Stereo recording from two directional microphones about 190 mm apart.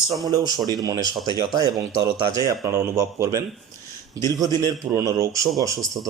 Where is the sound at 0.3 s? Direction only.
20° right (ahead or behind).